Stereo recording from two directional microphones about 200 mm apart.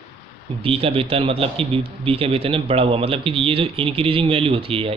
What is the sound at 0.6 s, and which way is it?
A man's voice, 30° right (ahead or behind).